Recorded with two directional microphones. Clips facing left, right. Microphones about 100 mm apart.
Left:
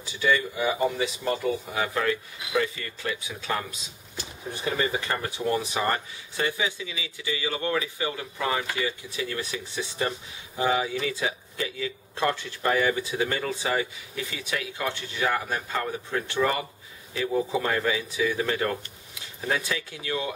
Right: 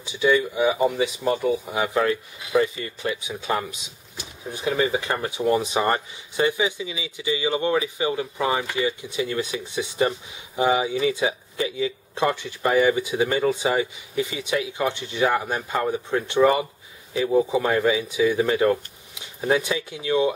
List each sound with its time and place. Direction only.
0.0 s speech: 15° right (ahead or behind)